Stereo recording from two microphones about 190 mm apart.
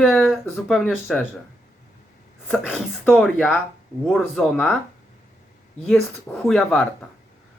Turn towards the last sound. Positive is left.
turn(degrees=0)  # may be behind; listen again after turning